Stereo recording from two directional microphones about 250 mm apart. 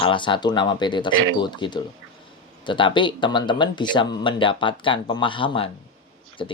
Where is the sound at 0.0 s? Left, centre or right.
Centre.